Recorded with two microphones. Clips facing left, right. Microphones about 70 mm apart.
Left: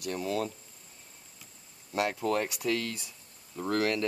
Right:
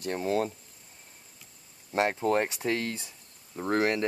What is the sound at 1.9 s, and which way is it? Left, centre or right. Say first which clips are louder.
Speech: right 3 dB; right.